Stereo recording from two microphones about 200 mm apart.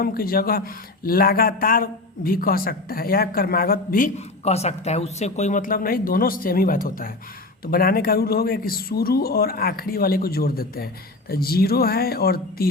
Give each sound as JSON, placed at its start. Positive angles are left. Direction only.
{"t": 0.0, "sound": "speech", "side_deg": 45}